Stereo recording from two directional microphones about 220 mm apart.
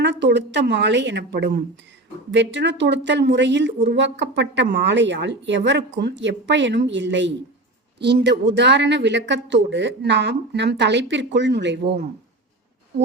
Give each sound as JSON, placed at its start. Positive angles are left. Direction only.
{"t": 0.0, "sound": "speech", "side_deg": -55}